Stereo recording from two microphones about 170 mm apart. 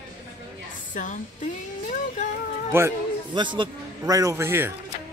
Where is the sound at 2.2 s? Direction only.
50° left (ahead or behind).